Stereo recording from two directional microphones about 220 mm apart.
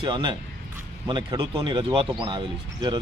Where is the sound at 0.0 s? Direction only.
20° right (ahead or behind).